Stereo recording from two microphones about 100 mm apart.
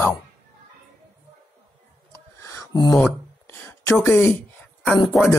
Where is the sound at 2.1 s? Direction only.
30° left (ahead or behind).